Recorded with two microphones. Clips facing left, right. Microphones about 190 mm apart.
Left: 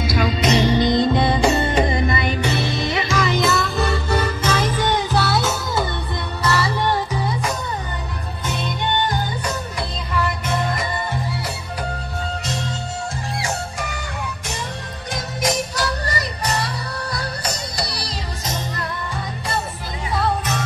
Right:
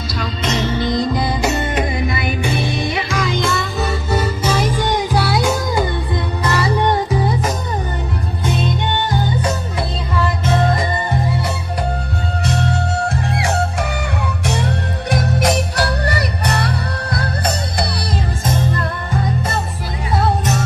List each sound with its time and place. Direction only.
0.2 s music: 15° left (ahead or behind)
0.8 s music: centre (ahead or behind)
3.1 s music: 5° left (ahead or behind); by 7.2 s 20° right (ahead or behind)
12.4 s music: 65° right (ahead or behind)
20.2 s music: 45° right (ahead or behind)